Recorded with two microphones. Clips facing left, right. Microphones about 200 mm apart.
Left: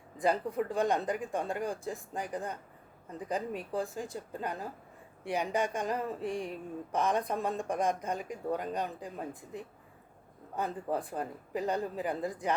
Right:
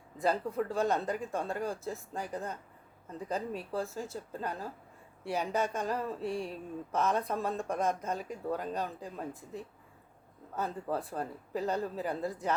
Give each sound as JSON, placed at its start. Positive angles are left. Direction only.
{"t": 0.2, "sound": "speech", "side_deg": 15}